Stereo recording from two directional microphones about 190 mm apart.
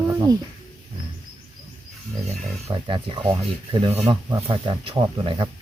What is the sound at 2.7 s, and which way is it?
Speech, 25° right (ahead or behind).